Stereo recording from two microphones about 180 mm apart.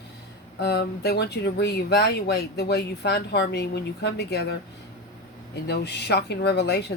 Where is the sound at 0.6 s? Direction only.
65° left (ahead or behind).